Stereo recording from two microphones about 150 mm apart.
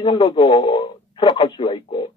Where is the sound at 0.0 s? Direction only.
30° left (ahead or behind).